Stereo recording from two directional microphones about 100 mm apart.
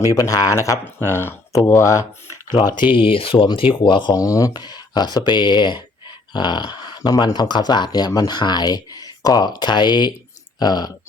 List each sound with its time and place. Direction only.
0.0 s speech: 35° left (ahead or behind)
2.5 s speech: 45° left (ahead or behind)
4.1 s speech: 35° left (ahead or behind)